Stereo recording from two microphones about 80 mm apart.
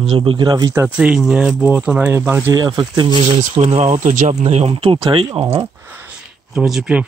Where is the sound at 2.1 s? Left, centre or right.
Right.